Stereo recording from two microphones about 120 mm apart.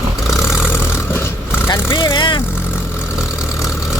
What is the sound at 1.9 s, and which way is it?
Vehicle, 45° left (ahead or behind).